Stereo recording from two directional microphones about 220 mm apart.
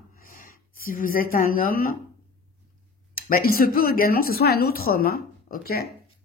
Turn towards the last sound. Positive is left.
turn(degrees=45)  # may be behind; listen again after turning